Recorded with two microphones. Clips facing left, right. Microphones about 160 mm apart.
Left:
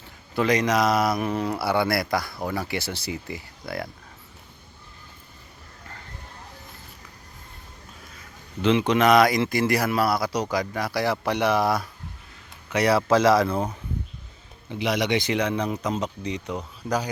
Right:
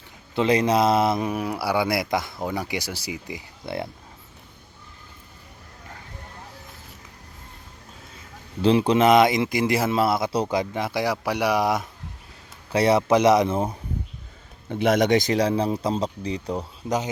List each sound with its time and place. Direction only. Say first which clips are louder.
0.3 s speech: right 2 dB; 25° right (ahead or behind)
1.3 s speech: even; 10° right (ahead or behind)
8.6 s speech: right 2 dB; 35° right (ahead or behind)
14.7 s a man's voice: right 5 dB; 50° right (ahead or behind); by 16.6 s 35° right (ahead or behind)